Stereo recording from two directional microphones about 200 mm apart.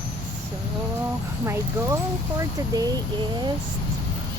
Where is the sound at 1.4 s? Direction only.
15° right (ahead or behind).